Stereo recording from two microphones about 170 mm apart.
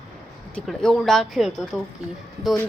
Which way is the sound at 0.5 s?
5° left (ahead or behind).